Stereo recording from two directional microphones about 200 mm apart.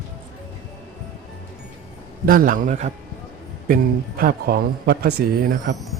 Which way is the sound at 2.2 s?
45° right (ahead or behind).